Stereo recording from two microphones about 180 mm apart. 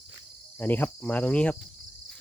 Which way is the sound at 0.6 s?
10° left (ahead or behind).